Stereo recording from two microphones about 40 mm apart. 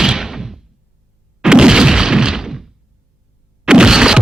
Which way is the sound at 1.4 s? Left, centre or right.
Centre.